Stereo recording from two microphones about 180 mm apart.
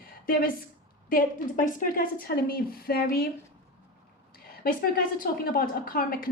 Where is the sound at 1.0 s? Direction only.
50° left (ahead or behind).